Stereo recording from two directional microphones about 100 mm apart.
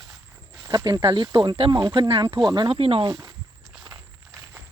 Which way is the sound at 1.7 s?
45° right (ahead or behind).